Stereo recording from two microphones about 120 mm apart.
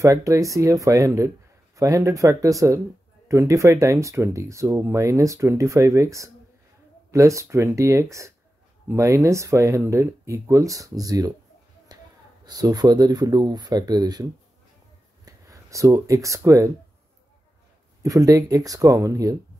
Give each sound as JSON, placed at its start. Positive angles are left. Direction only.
{"t": 0.0, "sound": "speech", "side_deg": -30}
{"t": 11.9, "sound": "a sound", "side_deg": -35}
{"t": 12.4, "sound": "speech", "side_deg": -35}
{"t": 15.2, "sound": "speech", "side_deg": -25}
{"t": 18.0, "sound": "speech", "side_deg": -30}